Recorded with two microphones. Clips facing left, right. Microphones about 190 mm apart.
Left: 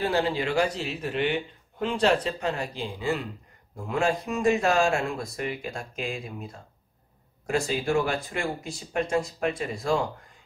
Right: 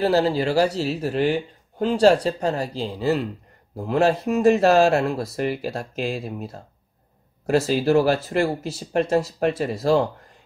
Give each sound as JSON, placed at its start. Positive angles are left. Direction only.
{"t": 0.0, "sound": "speech", "side_deg": -35}
{"t": 7.4, "sound": "speech", "side_deg": -40}
{"t": 9.6, "sound": "speech", "side_deg": -35}